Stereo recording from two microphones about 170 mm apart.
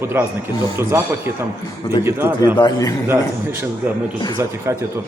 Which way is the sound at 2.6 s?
20° left (ahead or behind).